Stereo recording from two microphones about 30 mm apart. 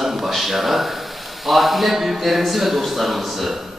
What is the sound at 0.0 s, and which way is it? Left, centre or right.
A man's voice, centre.